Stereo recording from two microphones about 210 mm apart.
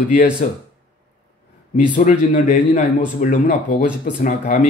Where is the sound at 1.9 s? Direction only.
35° left (ahead or behind).